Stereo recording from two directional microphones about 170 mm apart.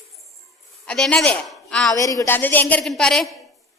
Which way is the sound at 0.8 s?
5° left (ahead or behind).